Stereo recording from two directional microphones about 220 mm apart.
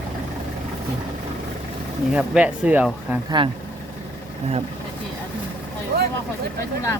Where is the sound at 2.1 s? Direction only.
5° right (ahead or behind).